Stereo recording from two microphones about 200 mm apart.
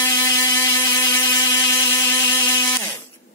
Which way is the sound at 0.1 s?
15° left (ahead or behind).